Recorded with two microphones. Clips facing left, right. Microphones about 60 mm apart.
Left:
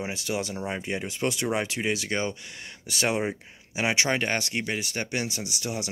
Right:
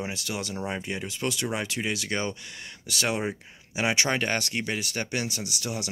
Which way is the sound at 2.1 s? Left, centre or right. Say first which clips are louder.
Left 1 dB; centre.